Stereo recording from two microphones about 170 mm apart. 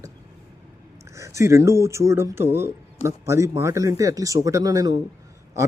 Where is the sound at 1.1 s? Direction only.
15° right (ahead or behind).